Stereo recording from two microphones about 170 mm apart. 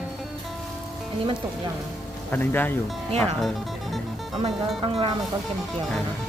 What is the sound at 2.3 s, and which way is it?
Speech, 10° left (ahead or behind).